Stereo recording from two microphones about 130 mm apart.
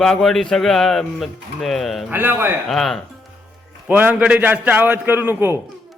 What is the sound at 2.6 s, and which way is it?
Speech, centre (ahead or behind).